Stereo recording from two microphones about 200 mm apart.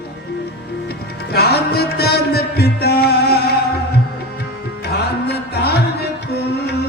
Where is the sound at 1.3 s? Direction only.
50° left (ahead or behind).